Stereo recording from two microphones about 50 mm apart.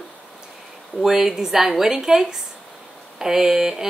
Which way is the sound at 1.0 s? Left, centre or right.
Centre.